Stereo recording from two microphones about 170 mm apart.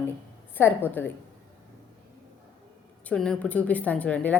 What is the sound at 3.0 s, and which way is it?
A woman's voice, 5° left (ahead or behind).